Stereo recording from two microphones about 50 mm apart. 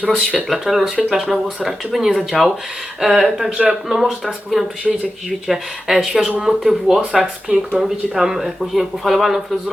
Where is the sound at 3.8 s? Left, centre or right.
Centre.